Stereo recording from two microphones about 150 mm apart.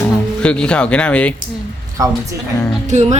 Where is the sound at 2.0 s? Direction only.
20° right (ahead or behind).